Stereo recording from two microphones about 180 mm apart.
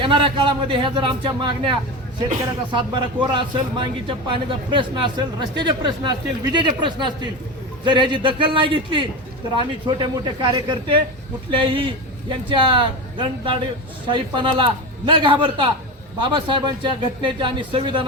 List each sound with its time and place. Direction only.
0.0 s speech: 25° right (ahead or behind)
2.7 s speech: 25° right (ahead or behind)